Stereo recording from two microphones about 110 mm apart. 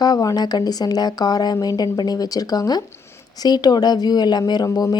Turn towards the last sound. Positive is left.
turn(degrees=35)  # may be behind; listen again after turning